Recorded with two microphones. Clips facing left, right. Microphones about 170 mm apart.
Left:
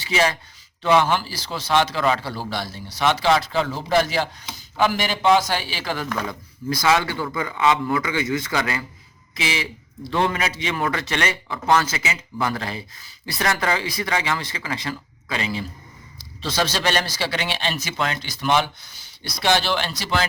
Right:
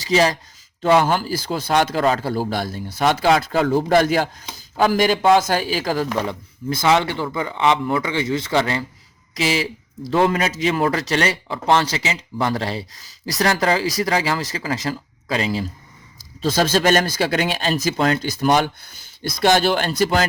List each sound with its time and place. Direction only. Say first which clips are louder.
0.0 s speech: right 4 dB; 35° right (ahead or behind)
6.7 s a man's voice: right 2 dB; 25° right (ahead or behind); by 20.2 s 50° right (ahead or behind)